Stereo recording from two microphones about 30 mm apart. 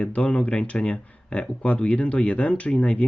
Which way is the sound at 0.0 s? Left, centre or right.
Left.